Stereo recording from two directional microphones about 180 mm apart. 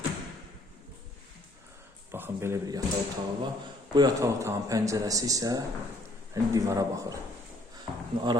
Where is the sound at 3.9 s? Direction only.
20° right (ahead or behind).